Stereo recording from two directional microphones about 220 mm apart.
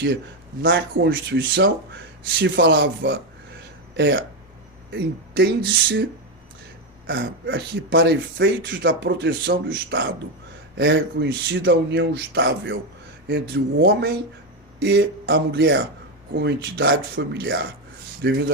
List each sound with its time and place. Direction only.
0.6 s speech: 55° right (ahead or behind)
7.1 s speech: 55° right (ahead or behind)